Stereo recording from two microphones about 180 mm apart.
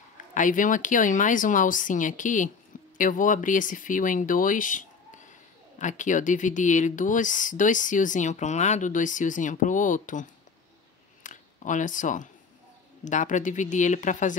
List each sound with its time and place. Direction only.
0.3 s speech: 45° left (ahead or behind)